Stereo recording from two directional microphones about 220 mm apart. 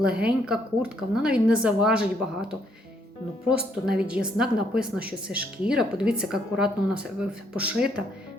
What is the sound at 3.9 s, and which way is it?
A woman's voice, 5° right (ahead or behind).